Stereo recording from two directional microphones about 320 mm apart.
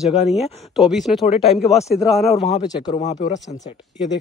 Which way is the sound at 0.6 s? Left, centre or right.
Centre.